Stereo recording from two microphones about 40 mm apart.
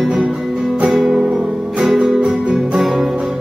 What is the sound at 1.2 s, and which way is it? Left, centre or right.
Music, right.